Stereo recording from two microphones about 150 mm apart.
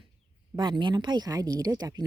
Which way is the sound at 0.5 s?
30° right (ahead or behind).